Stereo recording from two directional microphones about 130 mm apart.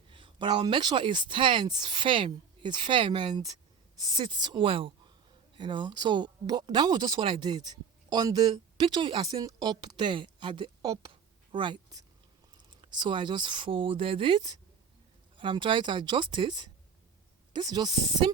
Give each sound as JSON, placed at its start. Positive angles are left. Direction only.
{"t": 0.1, "sound": "speech", "side_deg": -40}